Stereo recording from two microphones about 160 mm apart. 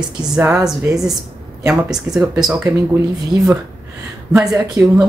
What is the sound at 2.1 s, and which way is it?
Speech, 10° right (ahead or behind).